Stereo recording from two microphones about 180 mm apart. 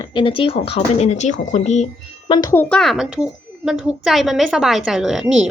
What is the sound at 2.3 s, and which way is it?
Speech, 20° left (ahead or behind).